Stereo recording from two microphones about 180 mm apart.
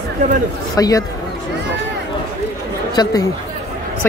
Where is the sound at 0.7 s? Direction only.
20° left (ahead or behind).